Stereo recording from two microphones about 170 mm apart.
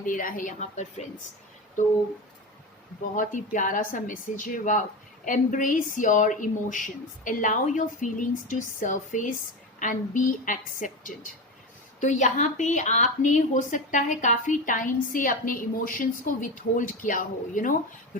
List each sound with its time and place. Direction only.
0.0 s a woman's voice: 55° left (ahead or behind)
3.2 s a woman's voice: 50° left (ahead or behind)